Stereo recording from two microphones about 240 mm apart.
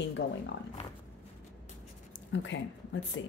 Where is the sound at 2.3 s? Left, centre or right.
Left.